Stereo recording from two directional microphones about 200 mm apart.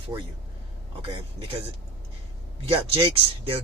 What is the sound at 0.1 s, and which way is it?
Speech, 15° right (ahead or behind).